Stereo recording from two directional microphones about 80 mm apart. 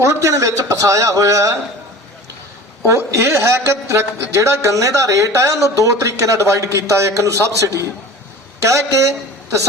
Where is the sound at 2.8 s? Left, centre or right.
Right.